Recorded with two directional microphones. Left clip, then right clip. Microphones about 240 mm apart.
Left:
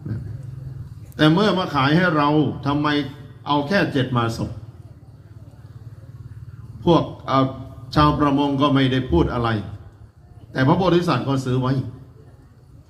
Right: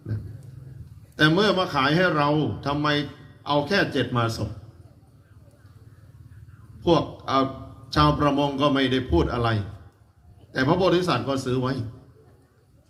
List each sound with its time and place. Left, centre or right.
1.1 s a man's voice: right
6.8 s a man's voice: right